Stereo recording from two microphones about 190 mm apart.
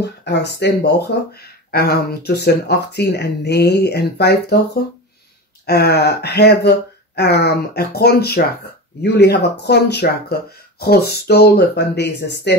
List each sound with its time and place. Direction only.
0.0 s speech: 60° left (ahead or behind)
5.7 s speech: 55° left (ahead or behind)